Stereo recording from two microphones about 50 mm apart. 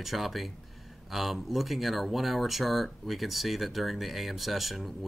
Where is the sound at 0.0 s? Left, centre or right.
Centre.